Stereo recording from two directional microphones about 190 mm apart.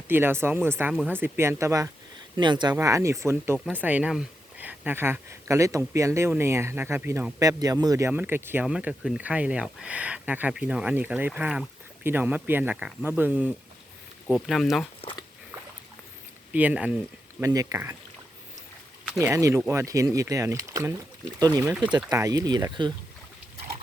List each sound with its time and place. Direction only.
0.1 s speech: 10° right (ahead or behind)
16.5 s speech: 5° right (ahead or behind)
19.0 s a sound: centre (ahead or behind)
19.3 s speech: 15° right (ahead or behind)